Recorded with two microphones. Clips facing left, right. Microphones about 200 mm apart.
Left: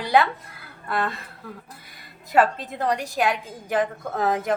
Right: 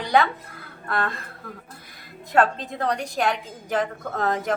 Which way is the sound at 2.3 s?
5° left (ahead or behind).